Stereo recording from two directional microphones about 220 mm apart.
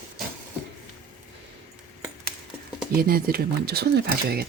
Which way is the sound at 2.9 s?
45° right (ahead or behind).